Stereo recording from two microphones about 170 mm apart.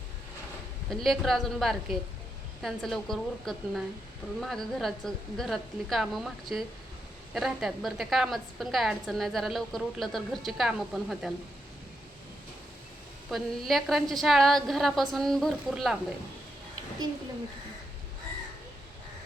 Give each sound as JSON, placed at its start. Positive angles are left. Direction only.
{"t": 0.9, "sound": "a woman's voice", "side_deg": 0}
{"t": 13.3, "sound": "a woman's voice", "side_deg": 0}